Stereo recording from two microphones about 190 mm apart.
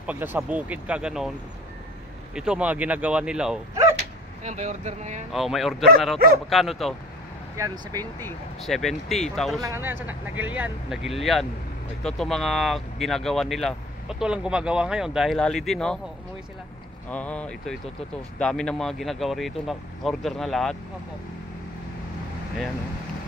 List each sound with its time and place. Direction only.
0.0 s speech: 10° right (ahead or behind)
2.3 s speech: 5° right (ahead or behind)
4.4 s speech: 35° right (ahead or behind)
5.3 s speech: centre (ahead or behind)
7.5 s speech: 20° right (ahead or behind)
8.6 s speech: centre (ahead or behind)
9.6 s speech: 15° right (ahead or behind); by 16.0 s 5° left (ahead or behind)
17.1 s speech: 5° left (ahead or behind)